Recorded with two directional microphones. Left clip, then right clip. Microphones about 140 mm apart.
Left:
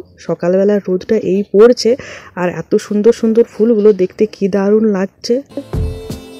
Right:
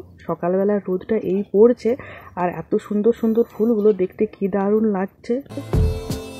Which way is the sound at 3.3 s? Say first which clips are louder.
Left 8 dB; 40° left (ahead or behind).